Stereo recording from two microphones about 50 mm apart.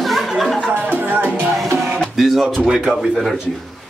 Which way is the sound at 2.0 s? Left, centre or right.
Centre.